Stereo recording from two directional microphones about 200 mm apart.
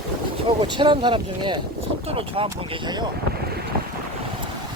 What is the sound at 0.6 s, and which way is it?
Speech, 25° right (ahead or behind).